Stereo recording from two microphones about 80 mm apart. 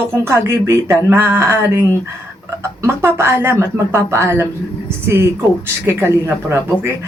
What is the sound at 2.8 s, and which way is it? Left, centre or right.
Speech, right.